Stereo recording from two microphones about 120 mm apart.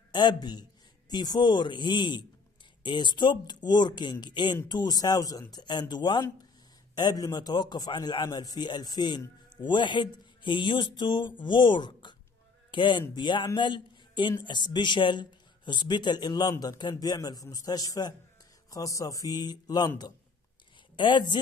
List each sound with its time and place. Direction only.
0.1 s a man's voice: 35° left (ahead or behind)
21.0 s speech: 40° left (ahead or behind)